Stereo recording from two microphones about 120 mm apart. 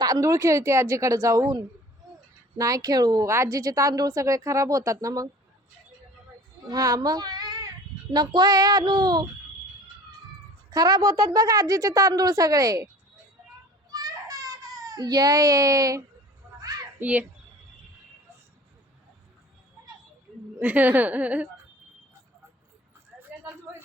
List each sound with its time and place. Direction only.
0.0 s a woman's voice: 30° right (ahead or behind)
6.7 s a child's voice: 30° right (ahead or behind)
10.7 s a woman's voice: 35° right (ahead or behind)
13.9 s baby cry: 30° right (ahead or behind)
16.6 s children playing: 30° right (ahead or behind)
17.0 s speech: 15° right (ahead or behind)
20.6 s speech: 15° right (ahead or behind)
23.1 s a sound: 10° right (ahead or behind)